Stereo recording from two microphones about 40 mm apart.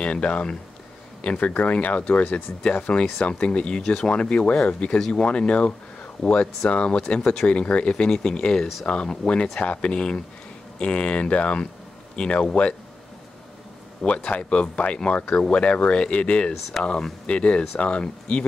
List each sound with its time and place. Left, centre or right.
0.0 s speech: left
1.5 s speech: left
14.0 s speech: left